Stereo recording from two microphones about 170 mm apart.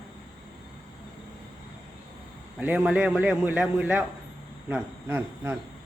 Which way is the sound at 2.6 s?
5° right (ahead or behind).